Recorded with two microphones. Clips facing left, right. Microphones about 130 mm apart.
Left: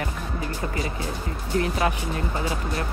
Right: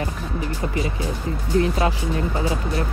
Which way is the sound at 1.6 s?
25° right (ahead or behind).